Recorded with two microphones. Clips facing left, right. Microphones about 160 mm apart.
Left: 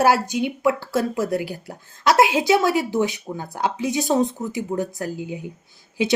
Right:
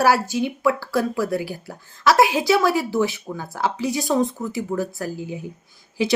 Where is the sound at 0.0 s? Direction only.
20° left (ahead or behind).